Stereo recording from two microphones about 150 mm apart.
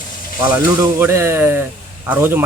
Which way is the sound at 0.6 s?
15° right (ahead or behind).